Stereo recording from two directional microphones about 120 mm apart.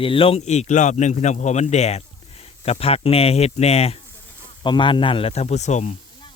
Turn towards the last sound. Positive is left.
turn(degrees=75)  # may be behind; listen again after turning